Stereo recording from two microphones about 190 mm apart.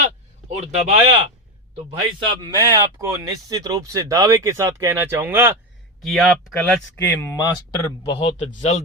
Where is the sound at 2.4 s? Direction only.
20° right (ahead or behind).